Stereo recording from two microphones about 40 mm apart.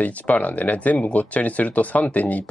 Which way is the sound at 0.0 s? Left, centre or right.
Left.